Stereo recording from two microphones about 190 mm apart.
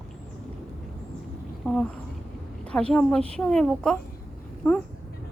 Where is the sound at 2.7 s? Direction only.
5° left (ahead or behind).